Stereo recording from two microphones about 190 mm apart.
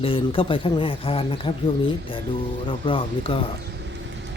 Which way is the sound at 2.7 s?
25° left (ahead or behind).